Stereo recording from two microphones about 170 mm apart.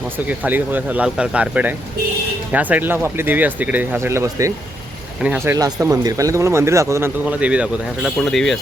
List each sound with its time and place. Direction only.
0.3 s speech: 10° right (ahead or behind)